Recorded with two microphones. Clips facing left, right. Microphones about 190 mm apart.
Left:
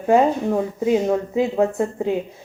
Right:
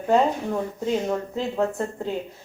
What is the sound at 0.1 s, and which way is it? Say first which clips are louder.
Speech: left 4 dB; 10° left (ahead or behind).